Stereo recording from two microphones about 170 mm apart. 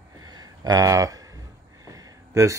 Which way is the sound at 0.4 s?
20° right (ahead or behind).